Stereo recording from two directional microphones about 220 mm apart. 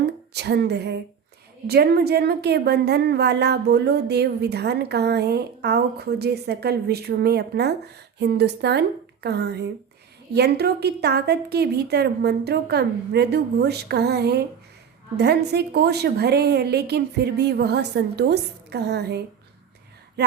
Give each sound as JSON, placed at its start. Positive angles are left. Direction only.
{"t": 0.0, "sound": "a woman's voice", "side_deg": -50}